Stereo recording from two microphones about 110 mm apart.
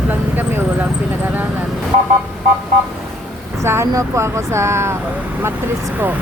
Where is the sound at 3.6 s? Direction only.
25° right (ahead or behind).